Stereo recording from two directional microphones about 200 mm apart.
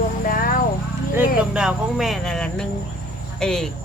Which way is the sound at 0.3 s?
45° left (ahead or behind).